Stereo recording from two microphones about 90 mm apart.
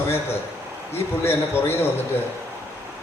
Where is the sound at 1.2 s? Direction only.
25° left (ahead or behind).